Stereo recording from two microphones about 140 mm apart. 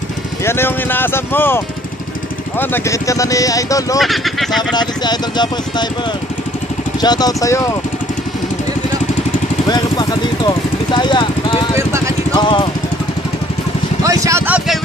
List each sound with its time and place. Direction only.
0.5 s speech: 15° left (ahead or behind)
2.6 s speech: 15° left (ahead or behind)
4.0 s speech: centre (ahead or behind)
4.7 s speech: 30° left (ahead or behind)
7.0 s speech: 30° left (ahead or behind)
9.7 s vehicle: 30° left (ahead or behind)
12.4 s speech: 35° left (ahead or behind)
14.0 s speech: 20° right (ahead or behind)